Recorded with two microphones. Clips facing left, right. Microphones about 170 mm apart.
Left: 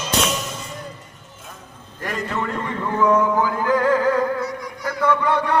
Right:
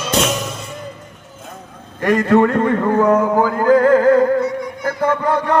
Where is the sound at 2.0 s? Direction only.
70° right (ahead or behind); by 4.0 s 45° right (ahead or behind).